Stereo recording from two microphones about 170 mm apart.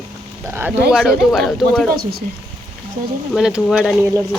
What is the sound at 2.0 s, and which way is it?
Speech, 65° right (ahead or behind).